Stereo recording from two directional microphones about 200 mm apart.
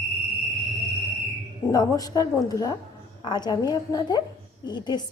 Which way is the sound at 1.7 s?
20° left (ahead or behind).